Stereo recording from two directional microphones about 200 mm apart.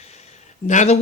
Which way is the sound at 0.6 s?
35° left (ahead or behind).